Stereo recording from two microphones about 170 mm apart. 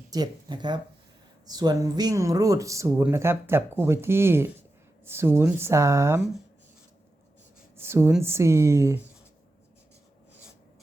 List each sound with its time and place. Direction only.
0.1 s speech: 25° right (ahead or behind)
7.8 s speech: 15° right (ahead or behind)